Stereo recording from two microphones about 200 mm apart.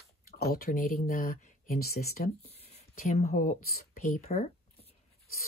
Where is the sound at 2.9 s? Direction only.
35° left (ahead or behind).